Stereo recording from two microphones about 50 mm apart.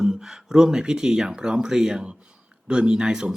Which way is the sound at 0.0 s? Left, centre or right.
Centre.